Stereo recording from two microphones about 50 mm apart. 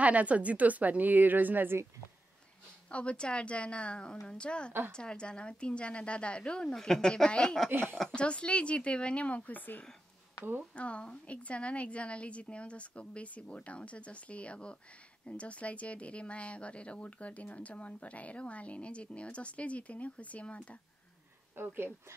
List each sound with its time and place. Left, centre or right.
0.0 s a woman's voice: right
2.9 s speech: left
10.7 s speech: left
21.5 s speech: right